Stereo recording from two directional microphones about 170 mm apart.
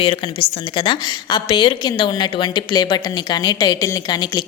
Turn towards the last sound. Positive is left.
turn(degrees=25)  # may be behind; listen again after turning